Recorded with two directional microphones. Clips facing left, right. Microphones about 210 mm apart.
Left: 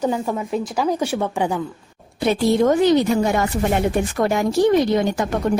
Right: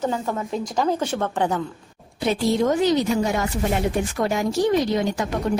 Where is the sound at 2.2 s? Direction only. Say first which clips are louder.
Left 4 dB; 60° left (ahead or behind).